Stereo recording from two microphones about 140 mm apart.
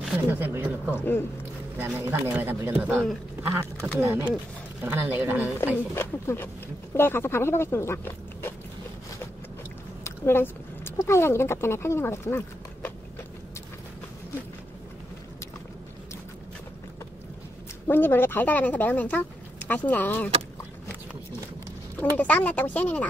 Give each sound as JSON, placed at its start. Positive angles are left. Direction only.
{"t": 0.3, "sound": "speech", "side_deg": -15}
{"t": 0.9, "sound": "speech", "side_deg": 15}
{"t": 1.8, "sound": "speech", "side_deg": -15}
{"t": 5.6, "sound": "speech", "side_deg": 15}
{"t": 10.0, "sound": "speech", "side_deg": 15}
{"t": 17.8, "sound": "speech", "side_deg": 15}
{"t": 22.1, "sound": "speech", "side_deg": 10}